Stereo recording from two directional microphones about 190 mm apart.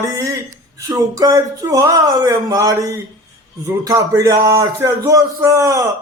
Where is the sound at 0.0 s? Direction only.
15° right (ahead or behind).